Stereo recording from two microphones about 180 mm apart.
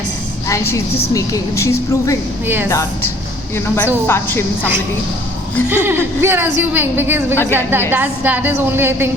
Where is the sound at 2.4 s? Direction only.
10° right (ahead or behind).